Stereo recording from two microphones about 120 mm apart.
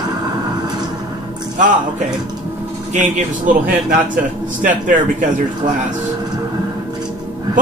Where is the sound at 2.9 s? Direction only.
90° right.